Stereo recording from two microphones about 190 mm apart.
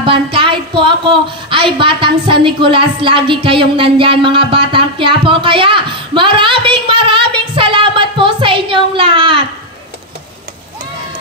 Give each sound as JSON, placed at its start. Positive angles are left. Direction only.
{"t": 0.0, "sound": "speech", "side_deg": -25}